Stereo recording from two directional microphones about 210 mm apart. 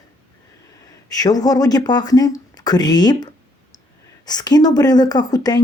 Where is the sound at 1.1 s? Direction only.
15° left (ahead or behind).